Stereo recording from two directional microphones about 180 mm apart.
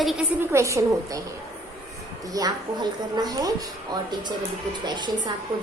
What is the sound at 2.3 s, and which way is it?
Speech, 20° right (ahead or behind).